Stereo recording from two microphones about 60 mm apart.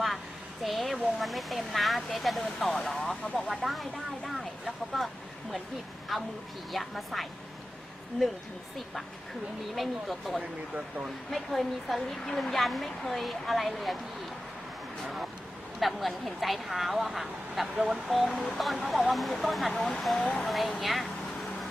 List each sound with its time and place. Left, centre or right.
0.7 s a woman's voice: centre
4.9 s a woman's voice: centre
8.2 s speech: centre
9.8 s a woman's voice: centre
15.8 s a woman's voice: centre
20.2 s speech: left
20.4 s speech: centre